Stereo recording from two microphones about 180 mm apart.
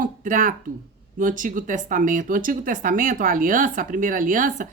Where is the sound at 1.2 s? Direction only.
45° right (ahead or behind).